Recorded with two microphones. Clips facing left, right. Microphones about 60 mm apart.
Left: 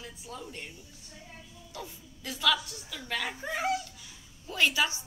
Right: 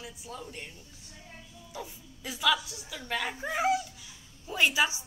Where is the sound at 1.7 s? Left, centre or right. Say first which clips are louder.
Right 1 dB; centre.